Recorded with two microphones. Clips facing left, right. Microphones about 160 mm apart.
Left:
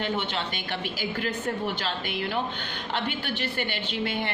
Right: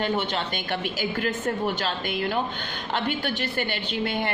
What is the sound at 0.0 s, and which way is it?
A woman's voice, 45° right (ahead or behind).